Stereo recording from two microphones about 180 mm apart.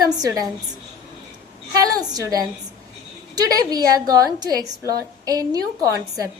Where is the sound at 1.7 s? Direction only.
20° right (ahead or behind).